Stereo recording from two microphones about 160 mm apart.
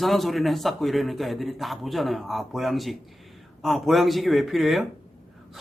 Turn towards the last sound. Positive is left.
turn(degrees=0)  # may be behind; listen again after turning